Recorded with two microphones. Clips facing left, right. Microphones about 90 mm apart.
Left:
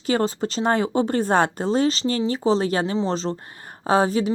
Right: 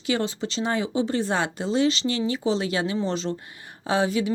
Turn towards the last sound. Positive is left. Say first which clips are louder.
# left 4 dB
turn(degrees=40)  # may be behind; listen again after turning